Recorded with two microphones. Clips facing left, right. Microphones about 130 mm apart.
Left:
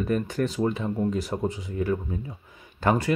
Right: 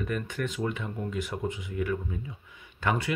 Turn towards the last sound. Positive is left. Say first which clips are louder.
# left 5 dB
turn(degrees=40)  # may be behind; listen again after turning